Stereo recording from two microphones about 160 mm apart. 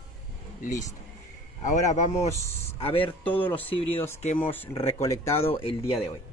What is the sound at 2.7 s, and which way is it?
Speech, 35° left (ahead or behind).